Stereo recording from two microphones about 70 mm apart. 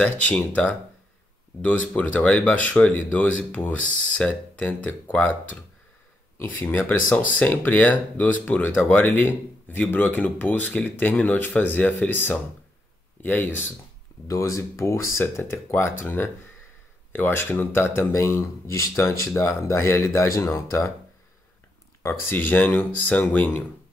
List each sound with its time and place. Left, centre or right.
0.0 s speech: centre
14.2 s speech: left
22.0 s speech: left